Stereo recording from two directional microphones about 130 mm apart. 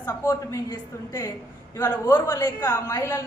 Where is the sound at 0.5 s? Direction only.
25° left (ahead or behind).